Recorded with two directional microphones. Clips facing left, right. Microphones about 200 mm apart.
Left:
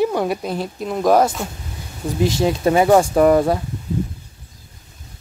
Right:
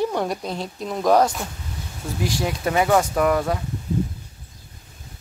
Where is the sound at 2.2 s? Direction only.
25° left (ahead or behind).